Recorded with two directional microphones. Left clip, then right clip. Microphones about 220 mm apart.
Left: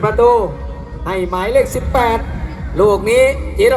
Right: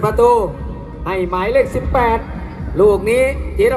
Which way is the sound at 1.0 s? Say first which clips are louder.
Even; centre (ahead or behind).